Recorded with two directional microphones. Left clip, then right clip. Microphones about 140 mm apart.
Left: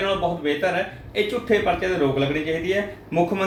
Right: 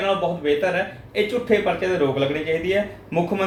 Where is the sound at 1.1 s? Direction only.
25° right (ahead or behind).